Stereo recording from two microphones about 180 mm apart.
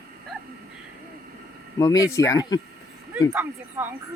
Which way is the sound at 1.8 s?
20° left (ahead or behind).